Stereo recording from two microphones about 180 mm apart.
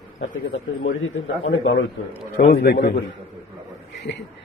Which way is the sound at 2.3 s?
60° left (ahead or behind).